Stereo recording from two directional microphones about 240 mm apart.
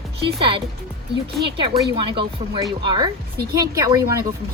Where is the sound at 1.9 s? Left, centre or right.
Centre.